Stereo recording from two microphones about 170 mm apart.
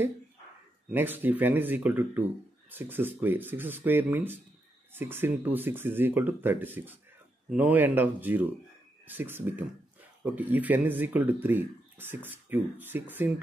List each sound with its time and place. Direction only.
0.9 s speech: 10° right (ahead or behind)